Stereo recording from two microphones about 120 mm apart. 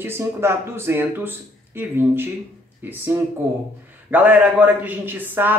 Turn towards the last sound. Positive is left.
turn(degrees=-15)  # may be behind; listen again after turning